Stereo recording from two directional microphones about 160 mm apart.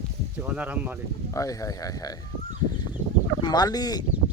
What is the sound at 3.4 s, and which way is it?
Speech, 25° left (ahead or behind).